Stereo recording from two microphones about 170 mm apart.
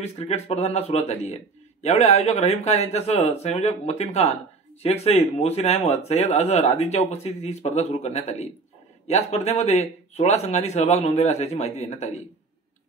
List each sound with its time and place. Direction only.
0.0 s a man's voice: 35° left (ahead or behind)